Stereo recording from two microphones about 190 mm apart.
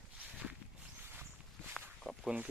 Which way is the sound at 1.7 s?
Centre (ahead or behind).